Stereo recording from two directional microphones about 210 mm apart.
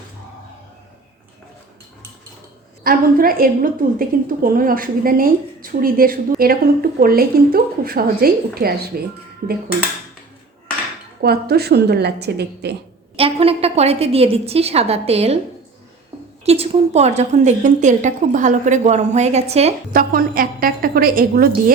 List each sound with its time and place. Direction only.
2.8 s a woman's voice: 45° right (ahead or behind)
11.2 s speech: 50° right (ahead or behind)
13.1 s a woman's voice: 25° right (ahead or behind)
16.4 s a woman's voice: 30° right (ahead or behind)
19.9 s speech: 45° right (ahead or behind)